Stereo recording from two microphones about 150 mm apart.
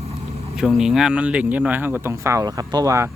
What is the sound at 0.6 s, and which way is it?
Speech, 5° right (ahead or behind).